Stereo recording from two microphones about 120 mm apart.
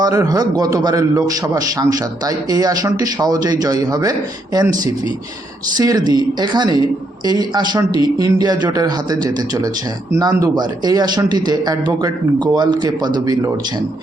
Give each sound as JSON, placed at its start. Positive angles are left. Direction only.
{"t": 0.0, "sound": "a man's voice", "side_deg": -30}
{"t": 5.7, "sound": "a man's voice", "side_deg": -30}